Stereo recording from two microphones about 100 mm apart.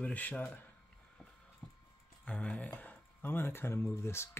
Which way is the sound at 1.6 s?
10° left (ahead or behind).